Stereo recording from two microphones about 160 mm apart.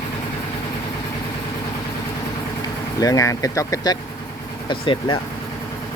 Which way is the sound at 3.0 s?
20° left (ahead or behind).